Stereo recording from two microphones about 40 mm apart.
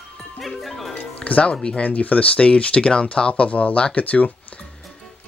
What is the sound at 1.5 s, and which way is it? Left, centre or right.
Speech, left.